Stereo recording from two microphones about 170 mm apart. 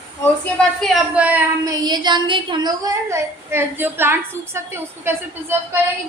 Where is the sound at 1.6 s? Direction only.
25° right (ahead or behind).